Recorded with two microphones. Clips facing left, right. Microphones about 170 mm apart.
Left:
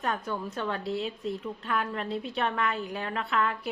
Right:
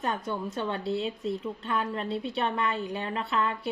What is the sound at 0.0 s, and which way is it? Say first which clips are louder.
A woman's voice: right 1 dB; centre (ahead or behind).